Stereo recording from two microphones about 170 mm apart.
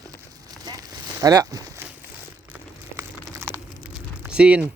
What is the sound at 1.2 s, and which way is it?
Speech, 20° right (ahead or behind).